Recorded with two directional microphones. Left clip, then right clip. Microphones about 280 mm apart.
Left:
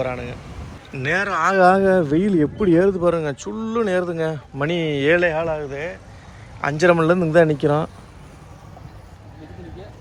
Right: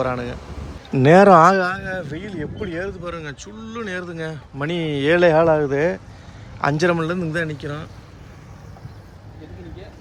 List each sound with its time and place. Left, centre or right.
0.0 s speech: centre
1.6 s speech: centre
6.6 s speech: centre